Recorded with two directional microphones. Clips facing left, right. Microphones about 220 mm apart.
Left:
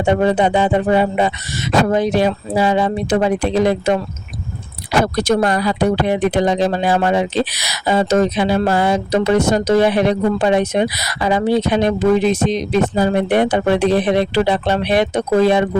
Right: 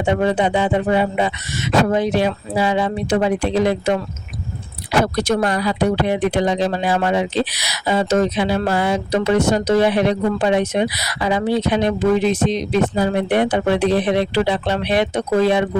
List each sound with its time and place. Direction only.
0.0 s speech: 40° left (ahead or behind)